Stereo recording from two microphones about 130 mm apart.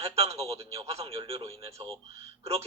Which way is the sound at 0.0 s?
50° right (ahead or behind).